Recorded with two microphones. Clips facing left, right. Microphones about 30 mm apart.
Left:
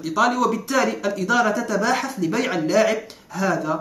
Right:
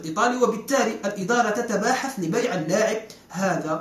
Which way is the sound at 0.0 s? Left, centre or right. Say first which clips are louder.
Left 3 dB; left.